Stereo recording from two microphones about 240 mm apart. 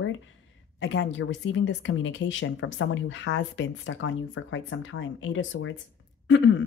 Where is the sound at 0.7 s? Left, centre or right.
Left.